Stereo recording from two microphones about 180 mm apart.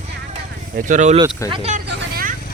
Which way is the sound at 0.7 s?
45° right (ahead or behind).